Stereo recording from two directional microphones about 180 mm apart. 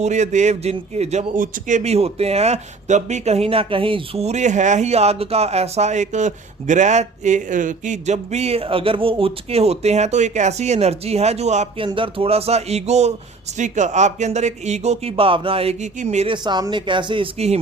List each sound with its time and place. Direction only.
0.0 s a man's voice: 40° right (ahead or behind)